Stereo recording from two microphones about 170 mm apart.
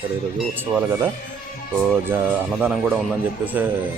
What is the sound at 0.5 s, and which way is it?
Speech, 10° right (ahead or behind).